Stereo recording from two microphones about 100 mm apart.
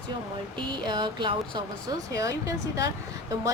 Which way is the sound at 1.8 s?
35° right (ahead or behind).